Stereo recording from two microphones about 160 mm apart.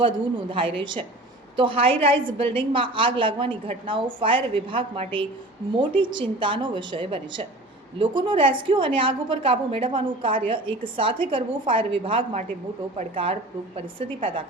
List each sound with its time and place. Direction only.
0.5 s a woman's voice: 35° right (ahead or behind)
13.7 s a woman's voice: 35° right (ahead or behind)